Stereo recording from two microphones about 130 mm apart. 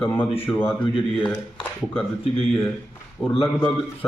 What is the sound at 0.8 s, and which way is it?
Speech, 40° left (ahead or behind).